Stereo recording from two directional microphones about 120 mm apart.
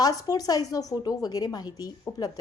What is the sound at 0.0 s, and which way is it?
A woman's voice, 30° left (ahead or behind).